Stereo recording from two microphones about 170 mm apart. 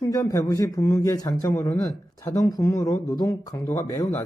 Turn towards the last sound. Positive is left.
turn(degrees=20)  # may be behind; listen again after turning